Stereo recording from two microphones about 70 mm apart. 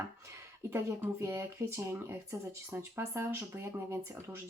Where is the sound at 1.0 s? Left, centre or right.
Right.